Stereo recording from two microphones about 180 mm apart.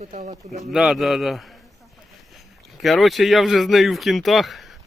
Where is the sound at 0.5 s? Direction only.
Centre (ahead or behind).